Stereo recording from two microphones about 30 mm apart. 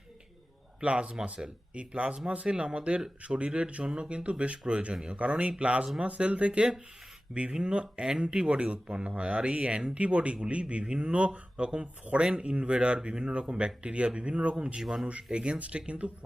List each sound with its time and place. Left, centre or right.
0.8 s speech: right
8.4 s speech: right
14.8 s a man's voice: centre
15.3 s speech: right
15.5 s speech: right